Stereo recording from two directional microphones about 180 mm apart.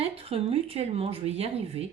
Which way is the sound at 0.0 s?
35° right (ahead or behind).